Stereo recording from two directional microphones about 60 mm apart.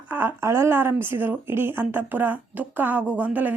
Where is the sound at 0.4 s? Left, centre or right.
Right.